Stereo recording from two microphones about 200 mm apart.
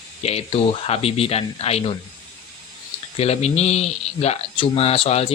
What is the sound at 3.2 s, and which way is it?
Speech, 30° left (ahead or behind).